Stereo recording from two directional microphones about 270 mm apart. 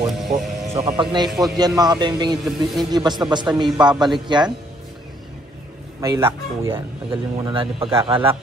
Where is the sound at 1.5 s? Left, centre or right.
Centre.